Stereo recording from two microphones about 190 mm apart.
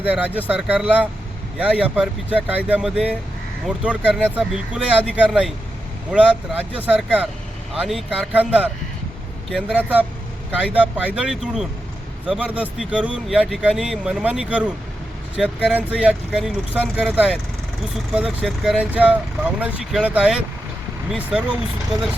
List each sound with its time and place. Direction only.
0.0 s speech: 10° right (ahead or behind)